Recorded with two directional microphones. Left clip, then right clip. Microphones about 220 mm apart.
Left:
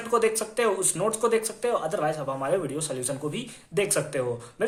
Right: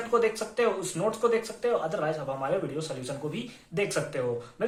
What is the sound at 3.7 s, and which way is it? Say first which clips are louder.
Speech: left 3 dB; 40° left (ahead or behind).